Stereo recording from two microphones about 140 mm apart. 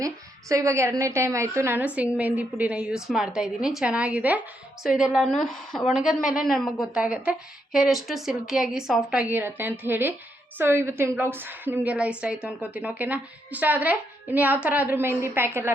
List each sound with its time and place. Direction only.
0.0 s a woman's voice: 25° right (ahead or behind)